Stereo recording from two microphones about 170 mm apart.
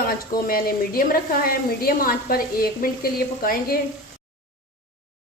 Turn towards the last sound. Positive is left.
turn(degrees=60)  # may be behind; listen again after turning